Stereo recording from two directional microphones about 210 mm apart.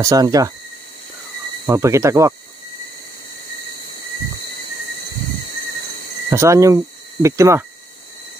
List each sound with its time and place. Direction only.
0.0 s speech: 15° right (ahead or behind)
1.7 s speech: 15° right (ahead or behind)
6.3 s speech: 15° right (ahead or behind)